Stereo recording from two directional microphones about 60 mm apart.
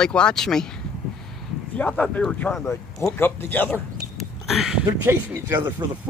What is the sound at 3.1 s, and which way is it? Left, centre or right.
Speech, left.